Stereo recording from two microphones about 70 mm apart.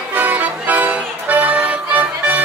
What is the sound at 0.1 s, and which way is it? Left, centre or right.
Music, right.